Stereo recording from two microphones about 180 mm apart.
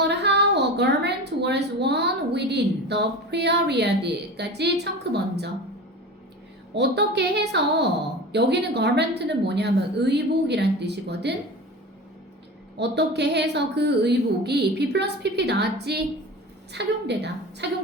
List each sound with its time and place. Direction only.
0.0 s a woman's voice: 70° right (ahead or behind)
6.7 s a woman's voice: 70° right (ahead or behind)
12.8 s a woman's voice: 70° right (ahead or behind)